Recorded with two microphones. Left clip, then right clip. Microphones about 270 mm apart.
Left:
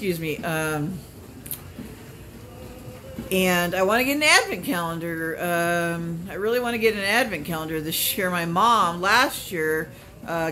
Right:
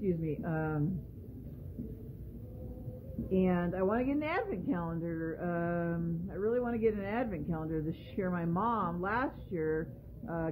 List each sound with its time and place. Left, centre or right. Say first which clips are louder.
0.0 s a woman's voice: left 9 dB; centre
3.3 s a woman's voice: left 11 dB; centre